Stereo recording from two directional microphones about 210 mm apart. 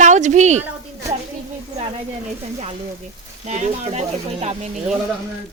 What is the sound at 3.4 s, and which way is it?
A woman's voice, 35° right (ahead or behind).